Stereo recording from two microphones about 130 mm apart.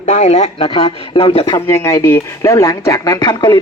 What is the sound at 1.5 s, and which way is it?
Speech, 20° left (ahead or behind).